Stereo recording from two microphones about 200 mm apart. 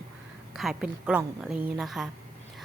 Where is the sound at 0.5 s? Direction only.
Centre (ahead or behind).